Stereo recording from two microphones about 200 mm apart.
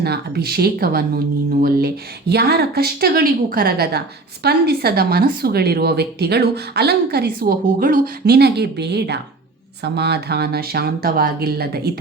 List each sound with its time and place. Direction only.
0.0 s speech: 50° right (ahead or behind)